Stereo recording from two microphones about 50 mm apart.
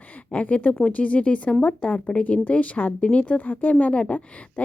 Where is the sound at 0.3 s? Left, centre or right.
Left.